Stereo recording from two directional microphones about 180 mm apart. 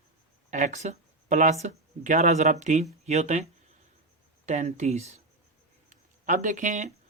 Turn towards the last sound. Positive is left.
turn(degrees=-45)  # may be behind; listen again after turning